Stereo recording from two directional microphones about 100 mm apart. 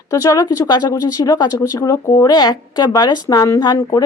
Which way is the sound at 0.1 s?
35° left (ahead or behind).